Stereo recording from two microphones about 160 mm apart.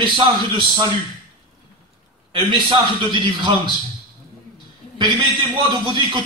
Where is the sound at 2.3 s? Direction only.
30° right (ahead or behind).